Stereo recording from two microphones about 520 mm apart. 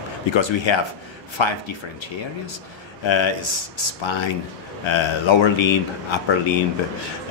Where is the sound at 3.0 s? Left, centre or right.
Left.